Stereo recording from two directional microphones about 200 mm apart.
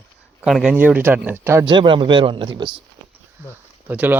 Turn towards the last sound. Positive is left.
turn(degrees=-10)  # may be behind; listen again after turning